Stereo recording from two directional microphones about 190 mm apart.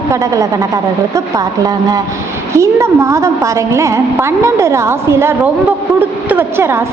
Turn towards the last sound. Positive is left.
turn(degrees=-15)  # may be behind; listen again after turning